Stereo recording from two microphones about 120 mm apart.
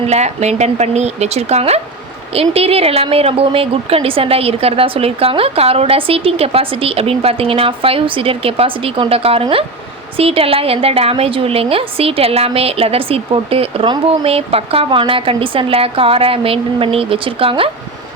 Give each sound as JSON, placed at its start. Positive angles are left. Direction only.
{"t": 0.1, "sound": "a woman's voice", "side_deg": -70}